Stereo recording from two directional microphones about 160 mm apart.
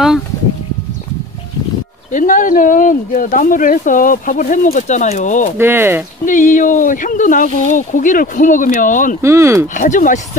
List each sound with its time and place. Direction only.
2.1 s speech: 55° left (ahead or behind)
5.6 s speech: 15° right (ahead or behind)
6.2 s speech: 55° left (ahead or behind)
9.2 s speech: 15° right (ahead or behind)
9.8 s speech: 55° left (ahead or behind)